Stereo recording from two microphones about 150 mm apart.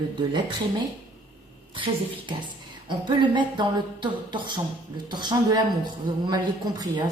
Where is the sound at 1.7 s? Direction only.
35° right (ahead or behind).